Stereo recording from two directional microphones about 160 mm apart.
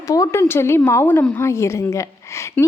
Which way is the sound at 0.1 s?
20° left (ahead or behind).